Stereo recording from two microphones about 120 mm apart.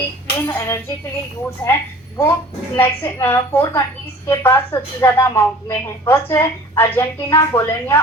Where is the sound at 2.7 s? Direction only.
20° left (ahead or behind).